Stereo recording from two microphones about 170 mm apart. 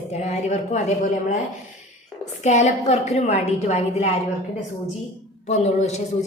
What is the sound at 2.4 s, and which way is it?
A woman's voice, 45° left (ahead or behind).